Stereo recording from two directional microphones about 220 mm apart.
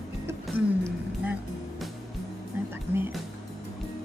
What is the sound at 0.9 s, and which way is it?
Music, 5° right (ahead or behind).